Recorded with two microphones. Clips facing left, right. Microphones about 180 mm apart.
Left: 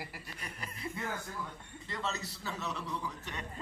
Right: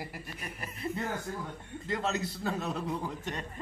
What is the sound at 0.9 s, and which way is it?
A man's voice, 35° right (ahead or behind).